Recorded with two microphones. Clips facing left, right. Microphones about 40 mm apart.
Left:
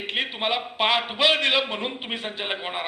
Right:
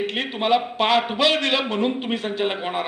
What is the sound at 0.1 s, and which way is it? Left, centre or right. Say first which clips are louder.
A man's voice: right 2 dB; centre.